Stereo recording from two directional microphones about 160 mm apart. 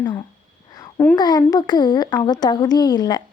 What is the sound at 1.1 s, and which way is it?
Speech, 25° left (ahead or behind).